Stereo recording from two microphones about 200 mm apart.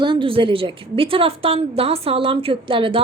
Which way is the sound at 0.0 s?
25° right (ahead or behind).